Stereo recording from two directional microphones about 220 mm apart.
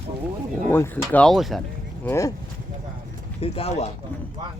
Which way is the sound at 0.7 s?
10° left (ahead or behind).